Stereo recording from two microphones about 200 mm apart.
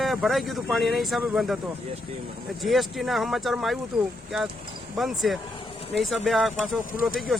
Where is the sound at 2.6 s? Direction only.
Centre (ahead or behind).